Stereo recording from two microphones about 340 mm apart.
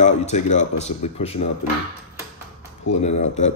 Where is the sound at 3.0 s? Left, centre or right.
Left.